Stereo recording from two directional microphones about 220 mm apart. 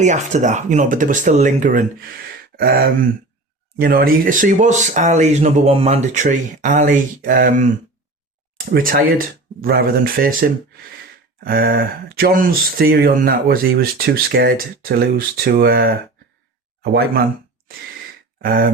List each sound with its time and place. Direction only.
0.0 s speech: 35° right (ahead or behind)
18.4 s speech: 40° right (ahead or behind)